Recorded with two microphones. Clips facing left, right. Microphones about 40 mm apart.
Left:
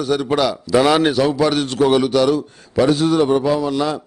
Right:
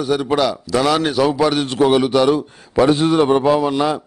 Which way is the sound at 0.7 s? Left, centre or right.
Centre.